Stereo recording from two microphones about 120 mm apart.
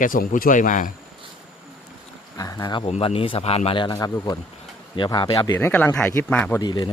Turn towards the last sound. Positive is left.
turn(degrees=35)  # may be behind; listen again after turning